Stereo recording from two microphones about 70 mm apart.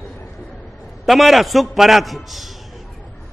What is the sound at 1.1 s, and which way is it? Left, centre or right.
A man's voice, centre.